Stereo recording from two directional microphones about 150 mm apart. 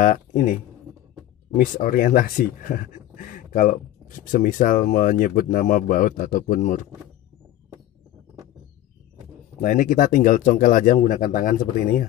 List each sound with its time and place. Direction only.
0.0 s speech: 60° left (ahead or behind)
1.6 s speech: 70° left (ahead or behind)
9.6 s speech: 60° left (ahead or behind)